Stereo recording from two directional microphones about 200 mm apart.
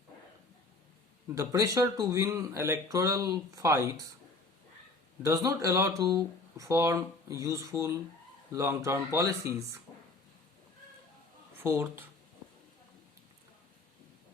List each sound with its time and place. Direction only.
1.4 s speech: 15° right (ahead or behind)
5.2 s speech: 15° right (ahead or behind)
11.6 s speech: 10° right (ahead or behind)